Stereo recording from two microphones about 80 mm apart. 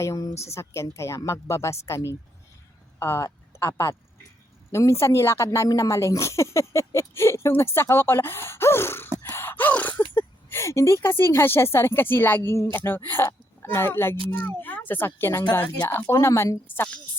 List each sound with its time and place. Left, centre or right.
0.0 s speech: left
0.4 s speech: left
3.0 s speech: left
5.5 s speech: left
9.2 s gasp: left
10.2 s a woman's voice: left
16.2 s speech: left